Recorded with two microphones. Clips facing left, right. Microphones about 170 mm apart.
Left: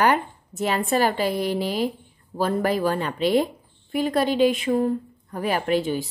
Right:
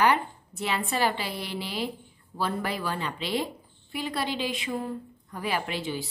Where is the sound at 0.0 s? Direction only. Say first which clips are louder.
Left 3 dB; 45° left (ahead or behind).